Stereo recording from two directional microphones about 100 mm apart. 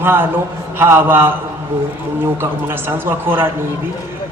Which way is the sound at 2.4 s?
25° right (ahead or behind).